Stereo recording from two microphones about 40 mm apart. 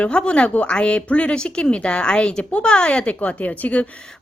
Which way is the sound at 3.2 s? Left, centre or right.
Left.